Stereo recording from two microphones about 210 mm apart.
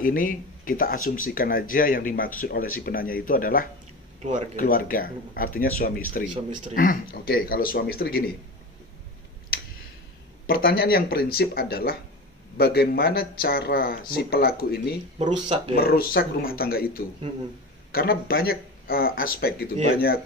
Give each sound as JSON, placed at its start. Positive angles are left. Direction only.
{"t": 0.0, "sound": "speech", "side_deg": 40}
{"t": 4.2, "sound": "speech", "side_deg": -35}
{"t": 4.6, "sound": "speech", "side_deg": 40}
{"t": 10.5, "sound": "speech", "side_deg": 45}
{"t": 15.1, "sound": "speech", "side_deg": -30}
{"t": 15.7, "sound": "speech", "side_deg": 45}